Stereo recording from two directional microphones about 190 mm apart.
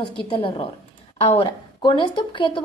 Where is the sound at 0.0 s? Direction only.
30° left (ahead or behind).